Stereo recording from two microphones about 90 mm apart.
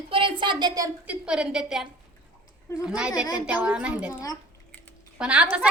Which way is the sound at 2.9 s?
10° right (ahead or behind).